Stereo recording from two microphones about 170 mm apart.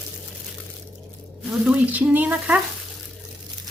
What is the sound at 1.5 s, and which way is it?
Speech, 10° right (ahead or behind).